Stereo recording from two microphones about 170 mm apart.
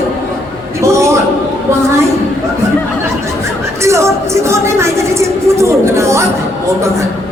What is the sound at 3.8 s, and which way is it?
Music, 15° right (ahead or behind).